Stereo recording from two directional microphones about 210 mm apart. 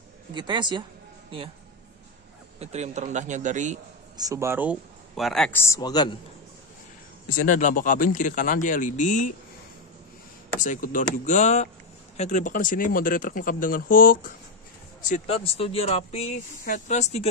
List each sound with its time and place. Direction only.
0.3 s speech: 20° right (ahead or behind)
2.6 s a man's voice: 30° right (ahead or behind)
4.2 s speech: 15° right (ahead or behind); by 6.1 s 20° left (ahead or behind)
7.2 s speech: 40° left (ahead or behind)
10.6 s speech: 40° left (ahead or behind)